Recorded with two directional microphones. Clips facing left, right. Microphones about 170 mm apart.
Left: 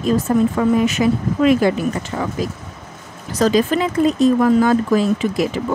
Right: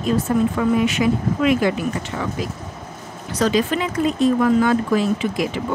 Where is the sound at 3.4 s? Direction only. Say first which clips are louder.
Left 3 dB; 40° left (ahead or behind).